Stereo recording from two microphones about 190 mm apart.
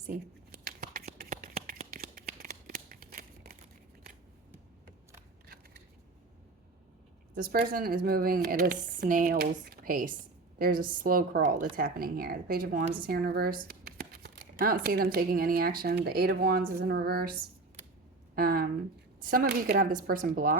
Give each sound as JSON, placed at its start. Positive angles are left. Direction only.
{"t": 0.1, "sound": "whispering", "side_deg": -50}
{"t": 1.2, "sound": "a sound", "side_deg": -50}
{"t": 7.3, "sound": "speech", "side_deg": -50}
{"t": 18.3, "sound": "speech", "side_deg": -50}